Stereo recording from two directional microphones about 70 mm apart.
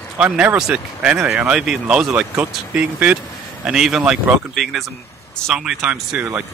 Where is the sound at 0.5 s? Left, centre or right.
Centre.